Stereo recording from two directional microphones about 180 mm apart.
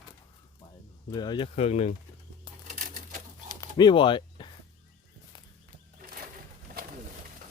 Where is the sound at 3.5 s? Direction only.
20° left (ahead or behind).